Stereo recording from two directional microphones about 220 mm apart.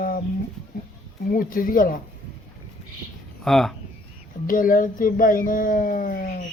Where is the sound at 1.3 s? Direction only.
40° left (ahead or behind).